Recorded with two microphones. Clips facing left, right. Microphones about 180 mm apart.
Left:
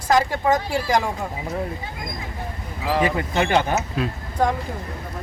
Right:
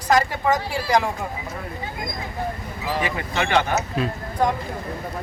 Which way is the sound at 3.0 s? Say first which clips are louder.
Left 5 dB; 35° left (ahead or behind).